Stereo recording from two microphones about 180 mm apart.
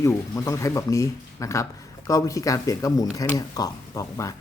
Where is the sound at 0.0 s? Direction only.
20° left (ahead or behind).